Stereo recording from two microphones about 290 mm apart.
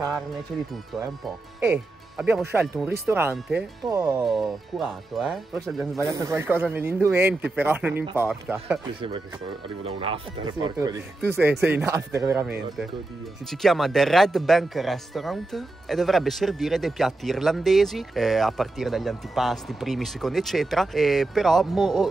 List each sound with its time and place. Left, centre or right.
2.1 s speech: centre
9.8 s speech: centre